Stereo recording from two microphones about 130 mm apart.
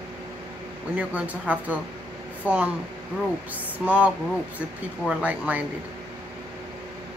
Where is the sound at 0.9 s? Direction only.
10° right (ahead or behind).